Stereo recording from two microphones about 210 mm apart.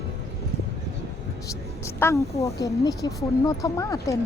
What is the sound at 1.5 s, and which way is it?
Speech, 15° left (ahead or behind).